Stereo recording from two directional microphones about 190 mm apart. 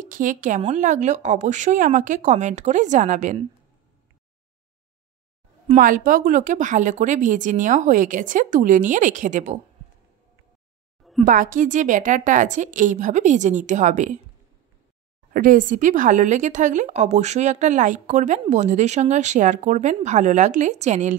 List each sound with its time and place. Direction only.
0.0 s speech: 45° right (ahead or behind)
5.7 s speech: 45° right (ahead or behind)
11.2 s speech: 45° right (ahead or behind)
15.3 s speech: 45° right (ahead or behind)